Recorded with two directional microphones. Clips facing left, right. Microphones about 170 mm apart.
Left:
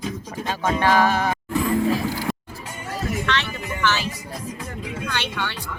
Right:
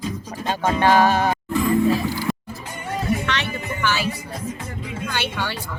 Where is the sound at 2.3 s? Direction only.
Centre (ahead or behind).